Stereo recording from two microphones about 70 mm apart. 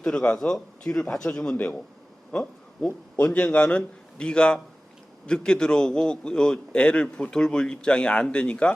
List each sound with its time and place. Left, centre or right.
0.0 s a man's voice: centre
0.3 s a man's voice: centre
0.9 s a man's voice: centre